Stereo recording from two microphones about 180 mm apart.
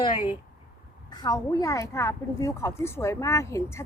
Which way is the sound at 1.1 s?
20° left (ahead or behind).